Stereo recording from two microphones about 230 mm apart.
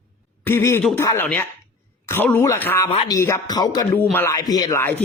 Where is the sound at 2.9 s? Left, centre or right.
Left.